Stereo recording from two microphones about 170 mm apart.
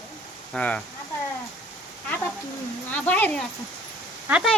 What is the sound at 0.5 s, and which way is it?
Speech, 5° left (ahead or behind).